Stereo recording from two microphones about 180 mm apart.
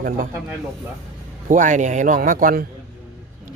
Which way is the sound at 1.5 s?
45° right (ahead or behind).